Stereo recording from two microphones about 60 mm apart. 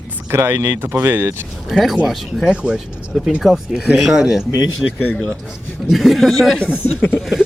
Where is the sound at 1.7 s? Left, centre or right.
Centre.